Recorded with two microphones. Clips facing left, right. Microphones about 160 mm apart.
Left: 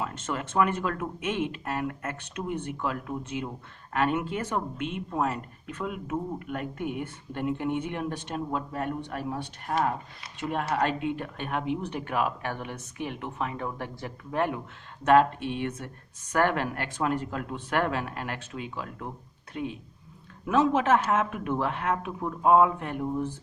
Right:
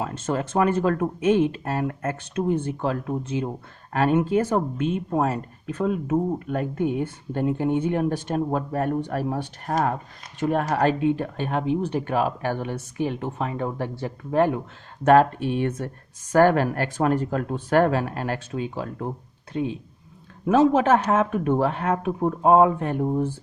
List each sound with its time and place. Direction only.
0.0 s speech: 40° right (ahead or behind)
20.5 s speech: 35° right (ahead or behind)